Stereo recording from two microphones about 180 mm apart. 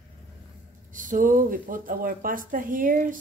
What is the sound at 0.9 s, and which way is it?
Speech, 45° right (ahead or behind).